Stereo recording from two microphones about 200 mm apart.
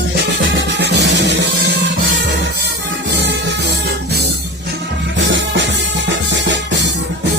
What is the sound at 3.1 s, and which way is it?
Music, 60° right (ahead or behind).